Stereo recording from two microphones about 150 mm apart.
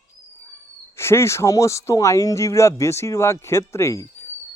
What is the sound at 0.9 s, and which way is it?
Speech, 15° left (ahead or behind).